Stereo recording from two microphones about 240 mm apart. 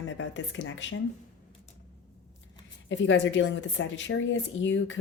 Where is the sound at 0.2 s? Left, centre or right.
Left.